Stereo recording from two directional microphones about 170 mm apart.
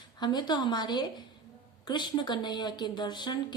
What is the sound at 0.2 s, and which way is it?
Speech, 25° left (ahead or behind).